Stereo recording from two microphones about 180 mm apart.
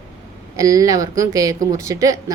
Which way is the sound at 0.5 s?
20° right (ahead or behind).